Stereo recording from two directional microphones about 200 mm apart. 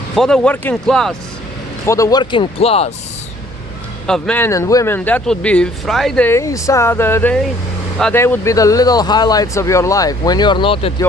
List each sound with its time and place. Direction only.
0.2 s a man's voice: 5° left (ahead or behind)
1.9 s speech: 15° left (ahead or behind)
4.0 s speech: 5° left (ahead or behind); by 10.9 s 25° left (ahead or behind)